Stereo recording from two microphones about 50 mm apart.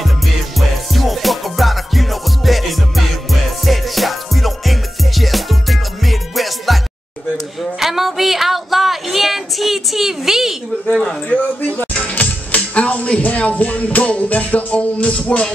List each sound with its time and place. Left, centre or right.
0.6 s music: centre
7.8 s music: centre
10.9 s a sound: centre
11.2 s music: left